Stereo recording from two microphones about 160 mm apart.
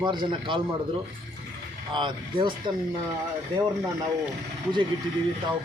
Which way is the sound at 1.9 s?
30° right (ahead or behind).